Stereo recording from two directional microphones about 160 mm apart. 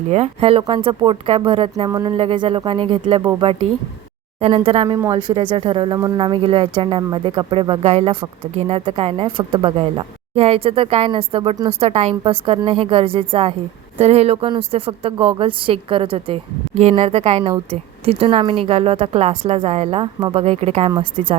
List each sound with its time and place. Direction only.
0.1 s speech: 40° right (ahead or behind)
4.9 s speech: 15° right (ahead or behind)
5.1 s speech: 30° right (ahead or behind)